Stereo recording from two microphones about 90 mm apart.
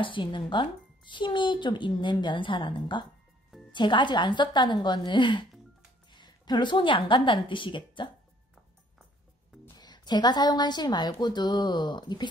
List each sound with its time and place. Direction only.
0.0 s a woman's voice: 65° left (ahead or behind)
9.8 s a woman's voice: 50° left (ahead or behind)